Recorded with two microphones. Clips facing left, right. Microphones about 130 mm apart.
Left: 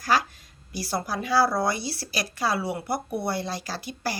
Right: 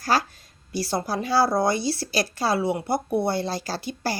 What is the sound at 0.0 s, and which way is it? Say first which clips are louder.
A woman's voice: right 1 dB; 30° right (ahead or behind).